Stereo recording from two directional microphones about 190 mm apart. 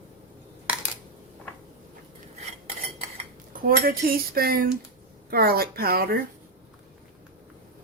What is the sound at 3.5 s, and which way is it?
Speech, 50° right (ahead or behind).